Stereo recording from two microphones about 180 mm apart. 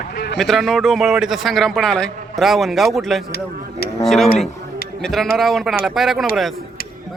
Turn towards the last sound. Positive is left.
turn(degrees=0)  # may be behind; listen again after turning